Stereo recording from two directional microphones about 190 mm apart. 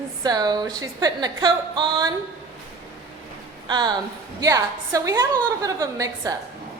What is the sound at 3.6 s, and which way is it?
A woman's voice, 20° right (ahead or behind).